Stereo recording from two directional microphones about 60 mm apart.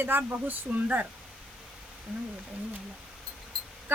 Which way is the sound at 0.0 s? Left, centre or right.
Right.